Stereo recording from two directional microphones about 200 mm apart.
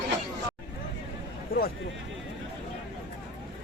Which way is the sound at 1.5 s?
50° left (ahead or behind).